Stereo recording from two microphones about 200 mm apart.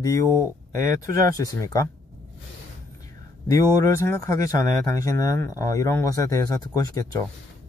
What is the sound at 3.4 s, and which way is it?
Speech, 15° left (ahead or behind).